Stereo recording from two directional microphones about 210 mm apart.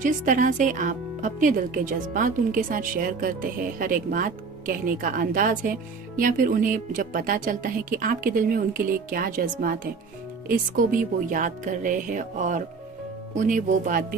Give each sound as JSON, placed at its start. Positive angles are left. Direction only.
{"t": 0.0, "sound": "speech", "side_deg": -40}